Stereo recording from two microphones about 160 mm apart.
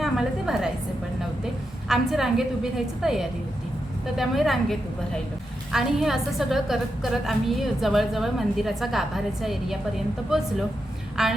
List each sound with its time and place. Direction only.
0.0 s a sound: 5° right (ahead or behind)
1.9 s a woman's voice: centre (ahead or behind)
11.2 s a woman's voice: 5° right (ahead or behind)